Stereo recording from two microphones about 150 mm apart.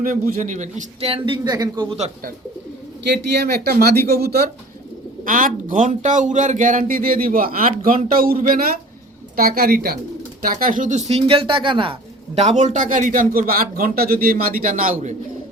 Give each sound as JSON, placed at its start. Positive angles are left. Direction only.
{"t": 0.0, "sound": "a man's voice", "side_deg": -65}
{"t": 1.1, "sound": "a man's voice", "side_deg": -30}
{"t": 3.2, "sound": "speech", "side_deg": -90}
{"t": 5.2, "sound": "a man's voice", "side_deg": -60}
{"t": 10.4, "sound": "speech", "side_deg": -65}
{"t": 12.3, "sound": "a man's voice", "side_deg": -50}